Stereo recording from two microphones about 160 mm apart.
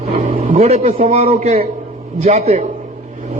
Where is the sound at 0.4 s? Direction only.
40° right (ahead or behind).